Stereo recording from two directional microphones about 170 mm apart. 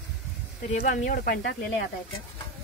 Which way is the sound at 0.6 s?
45° left (ahead or behind).